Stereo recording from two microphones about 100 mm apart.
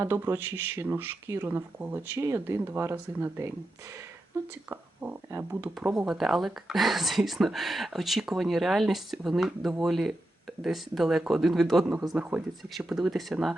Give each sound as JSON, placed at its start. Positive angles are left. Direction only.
{"t": 0.0, "sound": "speech", "side_deg": -25}
{"t": 4.7, "sound": "speech", "side_deg": -20}
{"t": 6.0, "sound": "speech", "side_deg": -5}